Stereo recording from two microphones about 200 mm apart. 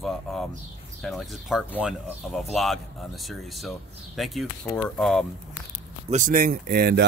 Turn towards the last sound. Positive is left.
turn(degrees=-55)  # may be behind; listen again after turning